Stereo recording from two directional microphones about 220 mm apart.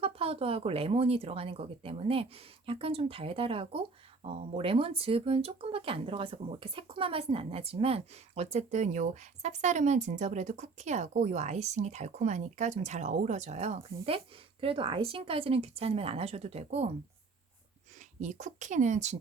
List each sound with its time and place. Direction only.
0.0 s speech: 25° right (ahead or behind)
18.2 s speech: 30° right (ahead or behind)